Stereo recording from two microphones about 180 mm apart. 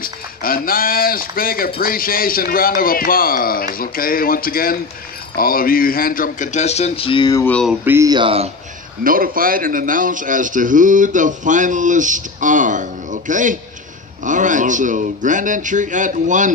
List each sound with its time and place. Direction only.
0.0 s speech: 55° left (ahead or behind); by 7.4 s 25° left (ahead or behind)
7.4 s a sound: 5° left (ahead or behind)
7.8 s speech: 15° right (ahead or behind)
9.0 s a man's voice: 50° right (ahead or behind)